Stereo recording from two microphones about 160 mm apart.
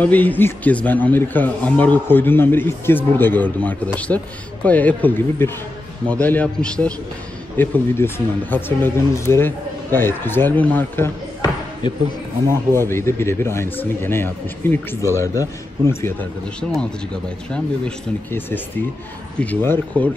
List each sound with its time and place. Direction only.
0.0 s a man's voice: 10° left (ahead or behind)
11.8 s speech: 30° left (ahead or behind)
12.7 s a man's voice: 15° left (ahead or behind)